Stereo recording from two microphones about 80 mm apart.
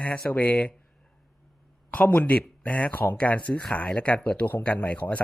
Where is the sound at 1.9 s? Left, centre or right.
Centre.